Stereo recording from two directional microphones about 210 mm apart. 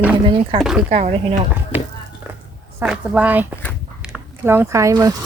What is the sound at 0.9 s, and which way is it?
Speech, 35° right (ahead or behind).